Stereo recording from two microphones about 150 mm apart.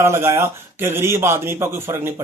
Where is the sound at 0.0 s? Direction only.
15° right (ahead or behind).